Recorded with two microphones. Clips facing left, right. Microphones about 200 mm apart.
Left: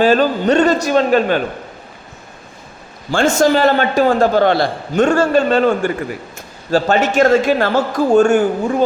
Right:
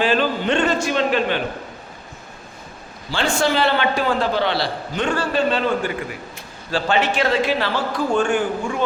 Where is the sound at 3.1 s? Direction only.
45° left (ahead or behind).